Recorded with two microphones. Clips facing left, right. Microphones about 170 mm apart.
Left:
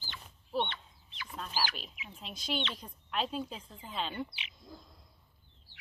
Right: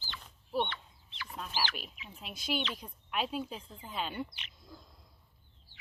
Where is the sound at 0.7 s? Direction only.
20° left (ahead or behind).